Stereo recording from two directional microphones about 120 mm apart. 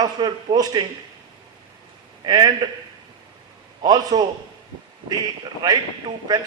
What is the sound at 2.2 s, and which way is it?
Speech, 35° right (ahead or behind).